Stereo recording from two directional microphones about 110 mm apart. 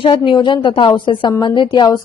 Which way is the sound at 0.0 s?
55° left (ahead or behind).